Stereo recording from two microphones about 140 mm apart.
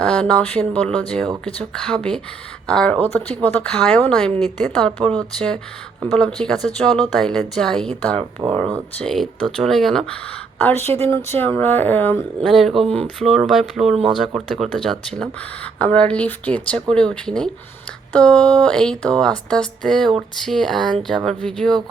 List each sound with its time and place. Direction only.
0.0 s speech: 5° left (ahead or behind)
8.2 s speech: 30° right (ahead or behind)
9.0 s speech: 5° left (ahead or behind)
10.6 s speech: 15° left (ahead or behind)
12.5 s speech: centre (ahead or behind)
12.8 s speech: 45° right (ahead or behind)
13.1 s speech: centre (ahead or behind)